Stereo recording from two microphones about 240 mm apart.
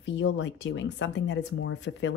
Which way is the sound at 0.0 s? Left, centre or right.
Left.